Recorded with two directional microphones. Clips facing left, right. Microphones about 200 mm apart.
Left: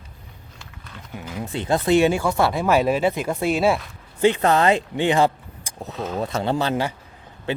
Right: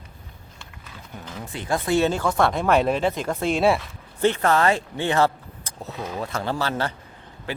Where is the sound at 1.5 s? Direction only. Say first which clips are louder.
Left 4 dB; 25° left (ahead or behind); by 3.8 s centre (ahead or behind).